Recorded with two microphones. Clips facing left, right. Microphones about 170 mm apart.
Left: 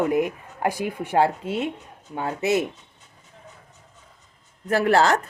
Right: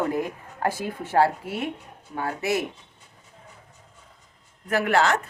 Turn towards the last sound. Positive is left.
turn(degrees=35)  # may be behind; listen again after turning